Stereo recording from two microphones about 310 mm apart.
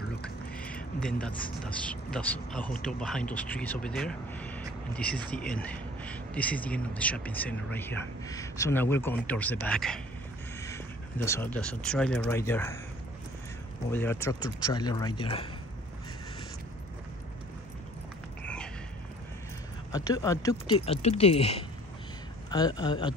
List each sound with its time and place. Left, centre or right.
0.9 s a man's voice: centre
11.2 s speech: centre
13.9 s speech: centre
19.9 s speech: centre